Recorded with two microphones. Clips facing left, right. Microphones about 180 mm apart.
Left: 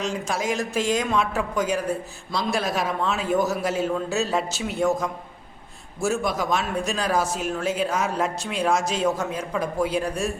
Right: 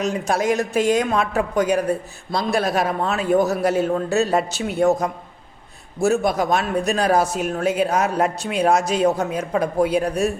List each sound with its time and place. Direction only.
0.0 s a man's voice: 65° right (ahead or behind)
6.0 s a man's voice: 60° right (ahead or behind)